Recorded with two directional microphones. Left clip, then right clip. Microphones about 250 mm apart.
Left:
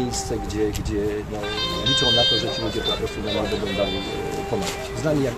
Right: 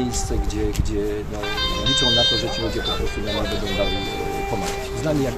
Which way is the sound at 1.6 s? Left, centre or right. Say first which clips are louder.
Right 1 dB; right.